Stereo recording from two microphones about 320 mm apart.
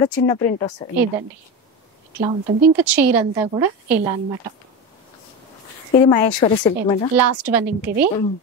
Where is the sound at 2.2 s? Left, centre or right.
Centre.